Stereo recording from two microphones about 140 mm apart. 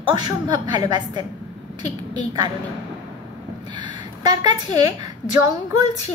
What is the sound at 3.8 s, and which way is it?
A woman's voice, 30° right (ahead or behind).